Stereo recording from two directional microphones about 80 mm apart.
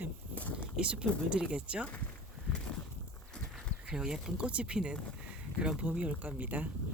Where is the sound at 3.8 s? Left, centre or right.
Centre.